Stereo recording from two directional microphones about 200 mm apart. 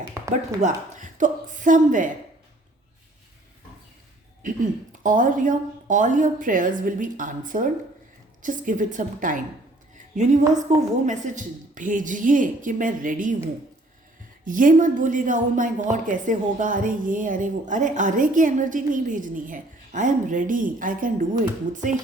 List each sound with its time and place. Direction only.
0.6 s a woman's voice: 40° right (ahead or behind)
4.4 s a woman's voice: 40° right (ahead or behind)
10.7 s a woman's voice: 35° right (ahead or behind)
14.4 s a woman's voice: 40° right (ahead or behind)